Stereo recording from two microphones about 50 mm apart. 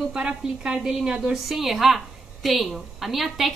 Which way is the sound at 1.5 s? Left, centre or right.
Centre.